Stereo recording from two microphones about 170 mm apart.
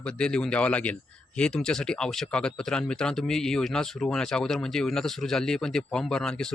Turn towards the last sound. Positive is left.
turn(degrees=5)  # may be behind; listen again after turning